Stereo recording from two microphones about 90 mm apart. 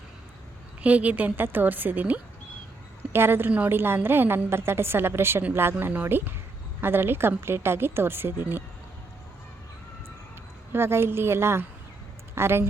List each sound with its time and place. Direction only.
0.8 s a woman's voice: 15° right (ahead or behind)
10.7 s a woman's voice: 25° right (ahead or behind)